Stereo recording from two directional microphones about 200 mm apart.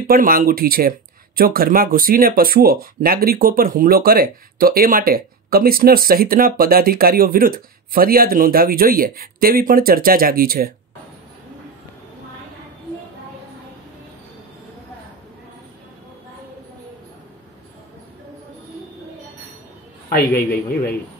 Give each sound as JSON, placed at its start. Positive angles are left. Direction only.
{"t": 0.0, "sound": "speech", "side_deg": -45}
{"t": 20.1, "sound": "a man's voice", "side_deg": 50}